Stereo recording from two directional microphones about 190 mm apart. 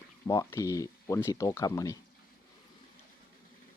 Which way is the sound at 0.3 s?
15° left (ahead or behind).